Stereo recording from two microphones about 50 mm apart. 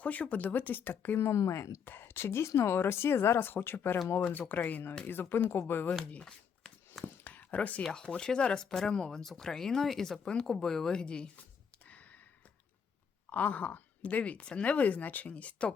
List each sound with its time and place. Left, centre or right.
0.0 s speech: left
1.2 s speech: left
1.8 s speech: left
4.2 s speech: left
6.1 s a sound: left
7.9 s speech: centre
11.9 s a sound: left
13.3 s speech: left